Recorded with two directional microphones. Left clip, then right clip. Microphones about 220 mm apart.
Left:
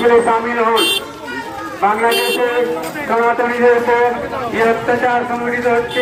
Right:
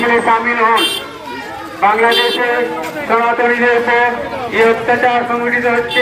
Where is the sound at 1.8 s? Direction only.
15° right (ahead or behind).